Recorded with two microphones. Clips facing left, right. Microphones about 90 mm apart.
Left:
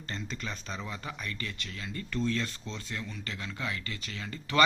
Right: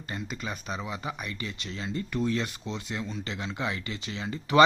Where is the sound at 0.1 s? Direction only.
15° right (ahead or behind).